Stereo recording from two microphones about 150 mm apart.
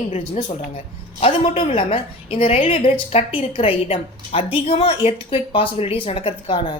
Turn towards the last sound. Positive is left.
turn(degrees=35)  # may be behind; listen again after turning